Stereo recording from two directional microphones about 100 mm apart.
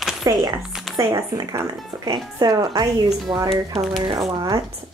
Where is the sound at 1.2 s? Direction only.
30° right (ahead or behind).